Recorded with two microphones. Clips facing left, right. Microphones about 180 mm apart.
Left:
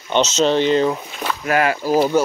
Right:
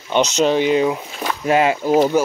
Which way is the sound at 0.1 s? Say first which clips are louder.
Even; 15° right (ahead or behind).